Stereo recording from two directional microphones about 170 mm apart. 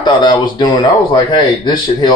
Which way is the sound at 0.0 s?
30° left (ahead or behind).